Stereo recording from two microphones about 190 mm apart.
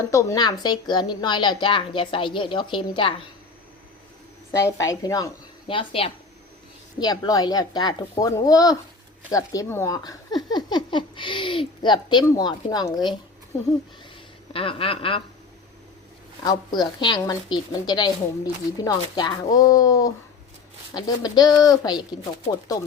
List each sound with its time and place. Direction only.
0.0 s a woman's voice: 15° left (ahead or behind)
4.8 s a woman's voice: 20° left (ahead or behind)
14.5 s a woman's voice: 30° left (ahead or behind)
16.4 s a woman's voice: 20° left (ahead or behind)